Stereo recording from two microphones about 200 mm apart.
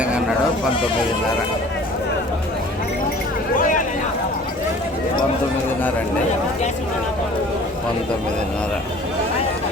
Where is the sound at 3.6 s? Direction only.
40° left (ahead or behind).